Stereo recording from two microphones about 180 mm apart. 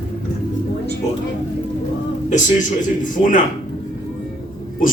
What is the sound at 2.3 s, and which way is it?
A man's voice, 45° left (ahead or behind).